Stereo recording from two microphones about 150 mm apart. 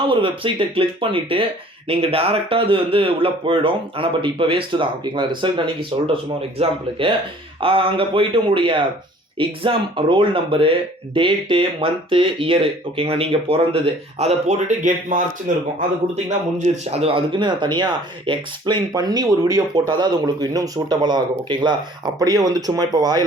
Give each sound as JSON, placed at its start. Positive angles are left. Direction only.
{"t": 0.1, "sound": "speech", "side_deg": -35}
{"t": 16.6, "sound": "speech", "side_deg": -45}